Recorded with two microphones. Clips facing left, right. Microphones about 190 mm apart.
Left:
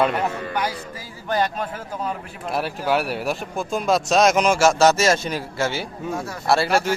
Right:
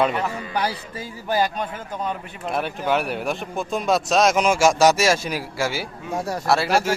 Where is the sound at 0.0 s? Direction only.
Centre (ahead or behind).